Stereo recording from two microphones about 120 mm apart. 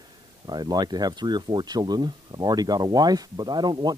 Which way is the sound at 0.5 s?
35° right (ahead or behind).